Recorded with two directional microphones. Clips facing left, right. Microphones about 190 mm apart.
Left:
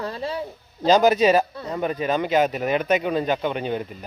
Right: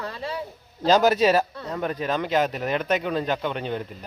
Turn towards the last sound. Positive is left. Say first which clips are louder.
# left 3 dB
turn(degrees=5)  # may be behind; listen again after turning